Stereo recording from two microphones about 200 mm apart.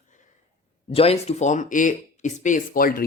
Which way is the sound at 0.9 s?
30° left (ahead or behind).